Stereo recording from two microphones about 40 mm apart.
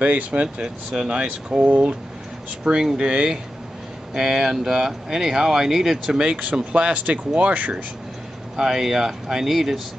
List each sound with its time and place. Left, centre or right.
0.0 s speech: right
4.1 s speech: centre
6.1 s speech: right
8.5 s speech: centre